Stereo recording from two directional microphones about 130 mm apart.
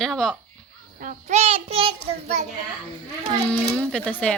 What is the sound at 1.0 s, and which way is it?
A child's voice, 55° right (ahead or behind).